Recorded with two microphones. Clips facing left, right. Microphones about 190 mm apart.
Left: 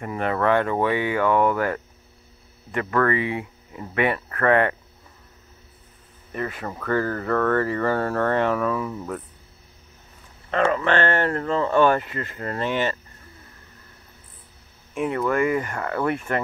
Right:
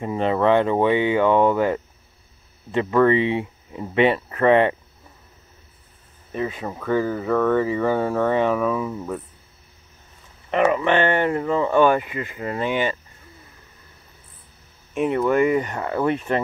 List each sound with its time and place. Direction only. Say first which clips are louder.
0.0 s speech: right 3 dB; 20° right (ahead or behind)
6.3 s speech: right 3 dB; 15° right (ahead or behind)
10.5 s speech: right 2 dB; 10° right (ahead or behind)
15.0 s speech: right 4 dB; 20° right (ahead or behind)